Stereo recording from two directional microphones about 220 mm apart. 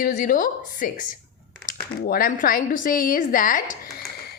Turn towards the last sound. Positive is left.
turn(degrees=40)  # may be behind; listen again after turning